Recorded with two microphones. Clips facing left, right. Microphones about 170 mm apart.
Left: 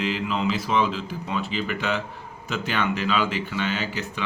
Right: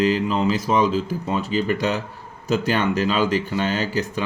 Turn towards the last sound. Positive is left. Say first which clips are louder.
# right 5 dB
turn(degrees=-40)  # may be behind; listen again after turning